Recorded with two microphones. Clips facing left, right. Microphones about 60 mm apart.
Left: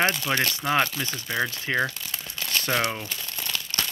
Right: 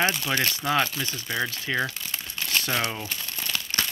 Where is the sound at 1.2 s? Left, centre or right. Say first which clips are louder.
Left 2 dB; centre.